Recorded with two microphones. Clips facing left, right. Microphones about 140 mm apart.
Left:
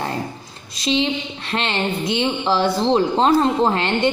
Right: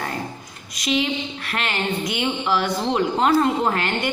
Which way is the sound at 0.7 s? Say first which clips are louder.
Left 2 dB; 30° left (ahead or behind).